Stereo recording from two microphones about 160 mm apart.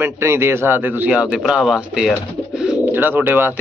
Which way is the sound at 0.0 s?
15° right (ahead or behind).